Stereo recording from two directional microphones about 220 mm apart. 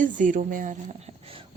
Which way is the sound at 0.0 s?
35° right (ahead or behind).